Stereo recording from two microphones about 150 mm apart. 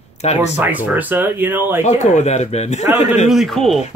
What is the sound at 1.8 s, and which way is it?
Speech, 50° left (ahead or behind).